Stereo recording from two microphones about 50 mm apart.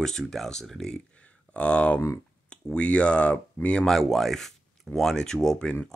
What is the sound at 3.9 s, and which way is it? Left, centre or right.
Speech, centre.